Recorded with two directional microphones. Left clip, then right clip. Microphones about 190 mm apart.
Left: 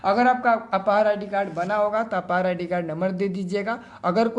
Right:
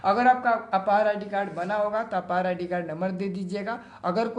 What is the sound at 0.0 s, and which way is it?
A man's voice, 25° left (ahead or behind).